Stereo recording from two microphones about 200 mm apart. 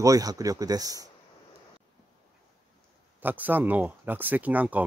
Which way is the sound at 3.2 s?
10° right (ahead or behind).